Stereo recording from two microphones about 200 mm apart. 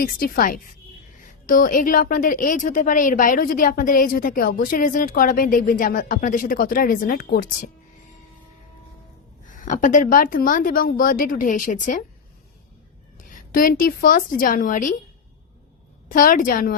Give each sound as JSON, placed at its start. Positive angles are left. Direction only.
{"t": 0.0, "sound": "a woman's voice", "side_deg": 45}
{"t": 9.5, "sound": "a woman's voice", "side_deg": 40}
{"t": 13.3, "sound": "a woman's voice", "side_deg": 45}
{"t": 16.0, "sound": "a woman's voice", "side_deg": 45}